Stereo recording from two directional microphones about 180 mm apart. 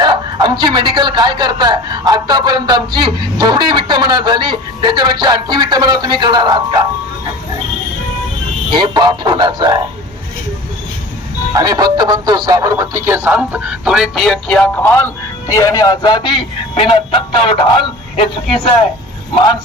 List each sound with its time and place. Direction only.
0.0 s speech: 25° right (ahead or behind)
8.7 s speech: 25° right (ahead or behind)
11.5 s speech: 20° right (ahead or behind); by 18.3 s 30° left (ahead or behind)